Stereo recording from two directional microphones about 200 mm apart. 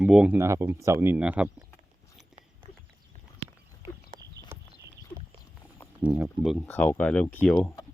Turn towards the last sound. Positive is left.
turn(degrees=5)  # may be behind; listen again after turning